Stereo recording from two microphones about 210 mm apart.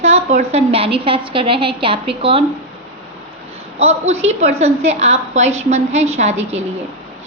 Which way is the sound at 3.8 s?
30° right (ahead or behind).